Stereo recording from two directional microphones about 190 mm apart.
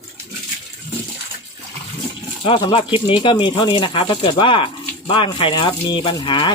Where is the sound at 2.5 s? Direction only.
25° left (ahead or behind).